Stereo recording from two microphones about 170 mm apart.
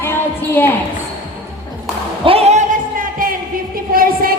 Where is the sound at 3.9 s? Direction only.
60° right (ahead or behind).